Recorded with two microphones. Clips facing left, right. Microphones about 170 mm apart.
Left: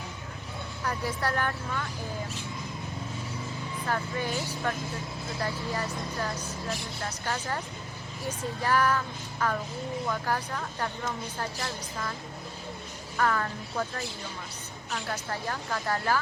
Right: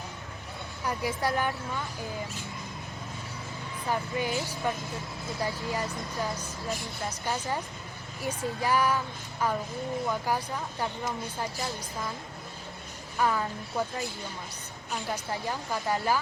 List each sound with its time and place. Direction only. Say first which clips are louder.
0.9 s speech: right 1 dB; 10° right (ahead or behind)
3.8 s speech: right 2 dB; 15° right (ahead or behind)
13.1 s speech: even; 15° right (ahead or behind)